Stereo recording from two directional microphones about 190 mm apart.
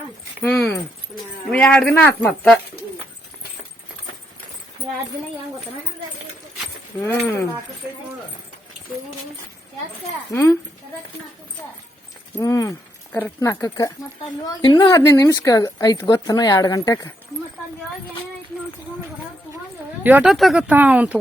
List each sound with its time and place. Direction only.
0.4 s keys jangling: 5° left (ahead or behind)
1.1 s speech: 5° left (ahead or behind)
7.0 s speech: 10° left (ahead or behind)
12.4 s speech: 15° left (ahead or behind)
20.1 s speech: 5° right (ahead or behind)